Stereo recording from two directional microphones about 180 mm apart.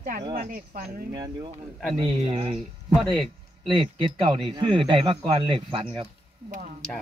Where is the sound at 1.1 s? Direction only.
20° right (ahead or behind).